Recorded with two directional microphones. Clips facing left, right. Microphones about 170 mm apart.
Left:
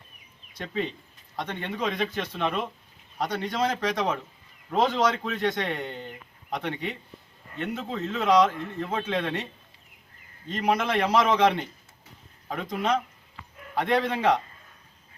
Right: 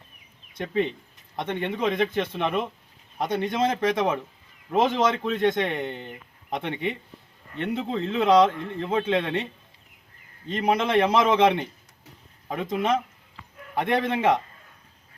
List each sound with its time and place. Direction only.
0.6 s speech: 20° right (ahead or behind)
10.5 s speech: 25° right (ahead or behind)